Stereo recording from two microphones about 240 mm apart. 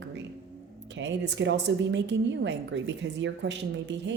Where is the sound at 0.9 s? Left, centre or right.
Right.